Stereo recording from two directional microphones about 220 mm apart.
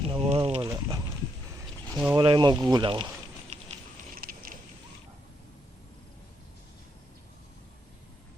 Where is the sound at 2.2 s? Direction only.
20° right (ahead or behind).